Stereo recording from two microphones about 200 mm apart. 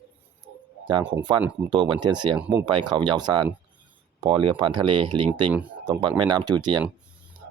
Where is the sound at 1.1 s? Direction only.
20° right (ahead or behind).